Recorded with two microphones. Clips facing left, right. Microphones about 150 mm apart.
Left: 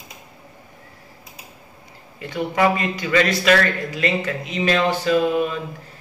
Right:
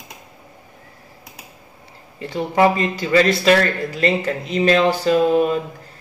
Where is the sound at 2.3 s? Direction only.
30° right (ahead or behind).